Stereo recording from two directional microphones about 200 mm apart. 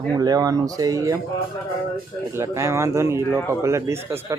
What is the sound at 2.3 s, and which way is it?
Speech, 15° right (ahead or behind).